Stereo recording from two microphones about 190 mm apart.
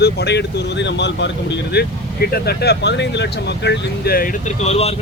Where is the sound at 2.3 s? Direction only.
55° left (ahead or behind).